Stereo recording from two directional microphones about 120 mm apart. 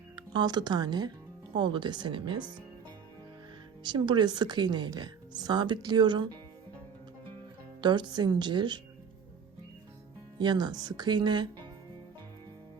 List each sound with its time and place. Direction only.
0.2 s speech: 35° right (ahead or behind)
3.8 s speech: 40° right (ahead or behind)
7.8 s speech: 40° right (ahead or behind)
10.3 s speech: 35° right (ahead or behind)